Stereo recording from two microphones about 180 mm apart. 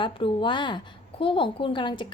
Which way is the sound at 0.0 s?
30° left (ahead or behind).